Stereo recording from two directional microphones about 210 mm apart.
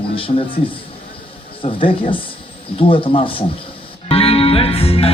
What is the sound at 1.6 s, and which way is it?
Speech, 25° left (ahead or behind).